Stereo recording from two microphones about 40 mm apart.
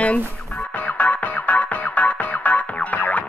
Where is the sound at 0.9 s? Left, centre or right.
Left.